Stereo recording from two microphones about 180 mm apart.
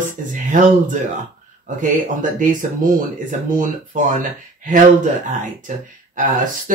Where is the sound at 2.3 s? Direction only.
45° right (ahead or behind).